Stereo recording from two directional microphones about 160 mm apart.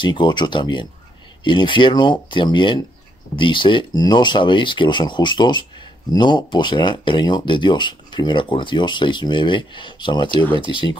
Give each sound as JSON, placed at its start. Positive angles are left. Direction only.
{"t": 0.0, "sound": "speech", "side_deg": 30}